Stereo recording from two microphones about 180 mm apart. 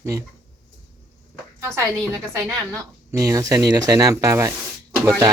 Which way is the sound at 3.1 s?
20° right (ahead or behind).